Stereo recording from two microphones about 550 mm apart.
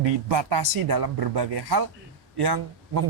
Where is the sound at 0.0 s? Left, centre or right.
Right.